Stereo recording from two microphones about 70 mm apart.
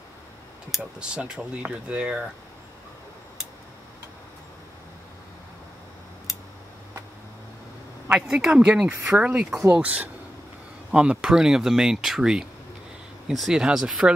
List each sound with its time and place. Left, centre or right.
0.7 s speech: centre
8.1 s speech: centre